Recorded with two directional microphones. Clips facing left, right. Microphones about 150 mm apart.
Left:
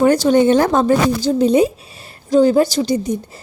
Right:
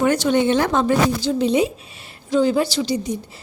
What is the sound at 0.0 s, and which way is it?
A woman's voice, 35° left (ahead or behind).